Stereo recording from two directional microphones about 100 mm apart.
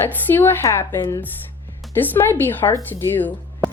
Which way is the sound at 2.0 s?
20° left (ahead or behind).